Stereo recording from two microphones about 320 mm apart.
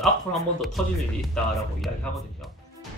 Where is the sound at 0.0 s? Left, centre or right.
Centre.